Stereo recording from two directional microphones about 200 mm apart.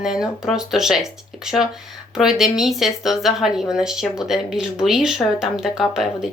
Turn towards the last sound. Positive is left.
turn(degrees=0)  # may be behind; listen again after turning